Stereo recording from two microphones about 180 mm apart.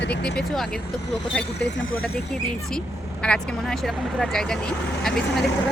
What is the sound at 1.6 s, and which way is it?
Speech, 70° left (ahead or behind).